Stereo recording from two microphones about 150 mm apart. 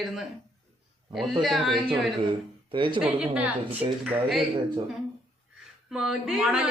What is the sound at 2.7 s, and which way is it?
Speech, 35° right (ahead or behind).